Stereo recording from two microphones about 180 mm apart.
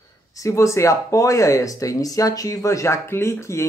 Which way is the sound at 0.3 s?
15° left (ahead or behind).